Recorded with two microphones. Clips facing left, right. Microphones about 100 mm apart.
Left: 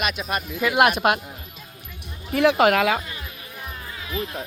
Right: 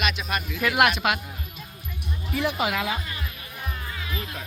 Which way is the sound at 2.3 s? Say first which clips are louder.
Left 9 dB; 80° left.